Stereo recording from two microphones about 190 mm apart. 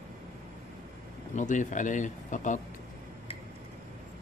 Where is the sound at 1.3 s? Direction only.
40° left (ahead or behind).